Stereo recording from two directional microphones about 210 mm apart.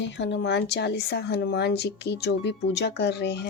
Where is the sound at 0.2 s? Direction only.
55° left (ahead or behind).